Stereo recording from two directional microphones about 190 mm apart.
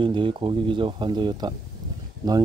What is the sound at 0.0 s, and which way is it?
Speech, 25° right (ahead or behind).